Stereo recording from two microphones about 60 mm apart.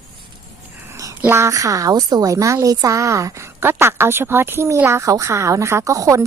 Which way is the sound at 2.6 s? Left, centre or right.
Right.